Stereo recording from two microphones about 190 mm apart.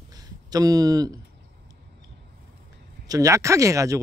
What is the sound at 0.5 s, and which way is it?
Speech, 20° right (ahead or behind).